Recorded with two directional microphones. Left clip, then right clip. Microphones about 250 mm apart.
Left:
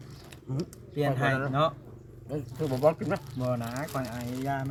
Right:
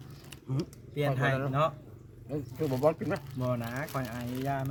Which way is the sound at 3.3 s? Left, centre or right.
Centre.